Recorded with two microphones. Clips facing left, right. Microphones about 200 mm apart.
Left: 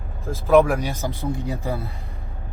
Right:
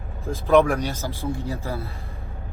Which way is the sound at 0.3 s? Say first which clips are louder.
Left 1 dB; centre (ahead or behind).